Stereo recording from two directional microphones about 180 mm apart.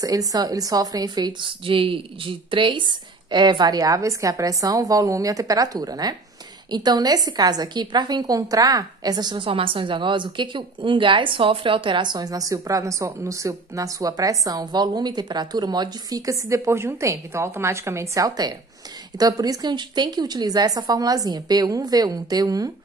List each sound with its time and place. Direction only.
0.0 s a woman's voice: 20° right (ahead or behind)